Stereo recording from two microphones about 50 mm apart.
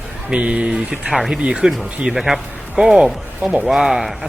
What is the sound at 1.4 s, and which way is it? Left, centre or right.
Speech, right.